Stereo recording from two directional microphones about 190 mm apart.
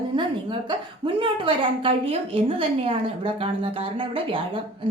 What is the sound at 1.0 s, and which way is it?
A woman's voice, 25° right (ahead or behind).